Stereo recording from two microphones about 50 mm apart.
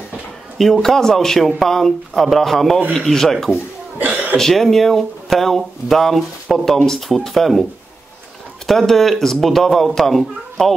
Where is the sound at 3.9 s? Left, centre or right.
Right.